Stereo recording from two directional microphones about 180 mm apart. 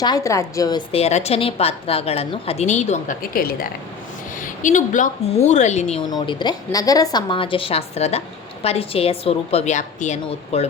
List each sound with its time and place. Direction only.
0.0 s a woman's voice: 20° left (ahead or behind)
0.9 s a woman's voice: 35° left (ahead or behind)
3.3 s speech: 55° left (ahead or behind)
4.4 s a sound: 45° left (ahead or behind)
5.5 s a woman's voice: 40° left (ahead or behind)
6.0 s a woman's voice: 25° left (ahead or behind)